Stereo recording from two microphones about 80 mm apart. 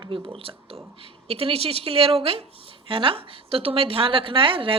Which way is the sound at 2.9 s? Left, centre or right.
Right.